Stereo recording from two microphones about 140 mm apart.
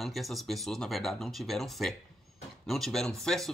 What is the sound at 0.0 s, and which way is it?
Speech, centre (ahead or behind).